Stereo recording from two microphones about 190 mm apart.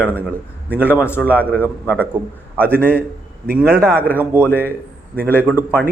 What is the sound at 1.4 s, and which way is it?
Speech, 10° left (ahead or behind).